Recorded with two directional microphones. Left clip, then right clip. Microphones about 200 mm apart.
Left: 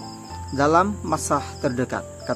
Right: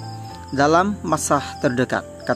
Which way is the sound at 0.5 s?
20° right (ahead or behind).